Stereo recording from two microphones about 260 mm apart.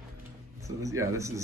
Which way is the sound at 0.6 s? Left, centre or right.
Centre.